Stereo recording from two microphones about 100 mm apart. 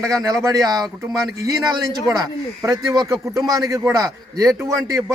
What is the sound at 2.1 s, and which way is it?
A man's voice, 35° right (ahead or behind).